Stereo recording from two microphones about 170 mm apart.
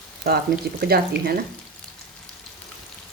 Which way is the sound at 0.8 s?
65° right (ahead or behind).